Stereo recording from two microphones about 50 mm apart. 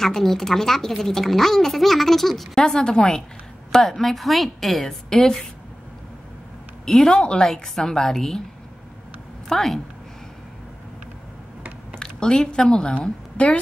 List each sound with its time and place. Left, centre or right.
0.0 s speech: centre
2.6 s a woman's voice: centre
6.9 s a woman's voice: centre
9.5 s speech: centre
12.0 s a woman's voice: centre